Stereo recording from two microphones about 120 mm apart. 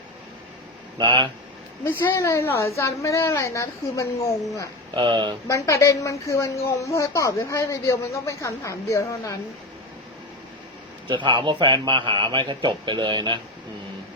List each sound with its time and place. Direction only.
0.9 s a man's voice: 40° right (ahead or behind)
1.8 s speech: 20° left (ahead or behind)
4.9 s a man's voice: 40° right (ahead or behind)
5.5 s speech: 25° left (ahead or behind)
11.1 s a man's voice: 40° right (ahead or behind)